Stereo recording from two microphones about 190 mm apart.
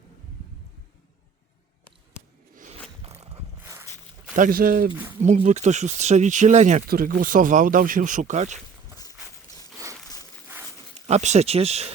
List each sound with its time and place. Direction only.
2.6 s a sound: 40° right (ahead or behind)
4.4 s speech: 45° right (ahead or behind)
5.2 s speech: 40° right (ahead or behind)
6.8 s speech: 50° right (ahead or behind)
9.7 s a sound: 15° right (ahead or behind)
11.0 s speech: 35° right (ahead or behind)